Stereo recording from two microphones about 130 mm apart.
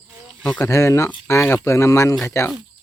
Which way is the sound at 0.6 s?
25° left (ahead or behind).